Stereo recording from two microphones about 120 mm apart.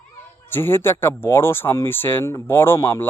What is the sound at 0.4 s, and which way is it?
A man's voice, 20° left (ahead or behind).